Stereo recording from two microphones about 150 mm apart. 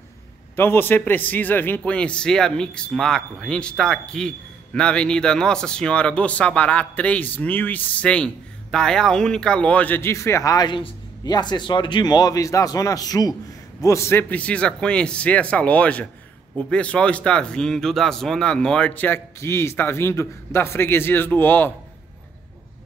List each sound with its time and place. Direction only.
0.6 s speech: 15° left (ahead or behind)